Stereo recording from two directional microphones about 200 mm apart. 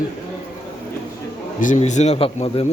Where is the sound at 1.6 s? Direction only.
40° left (ahead or behind).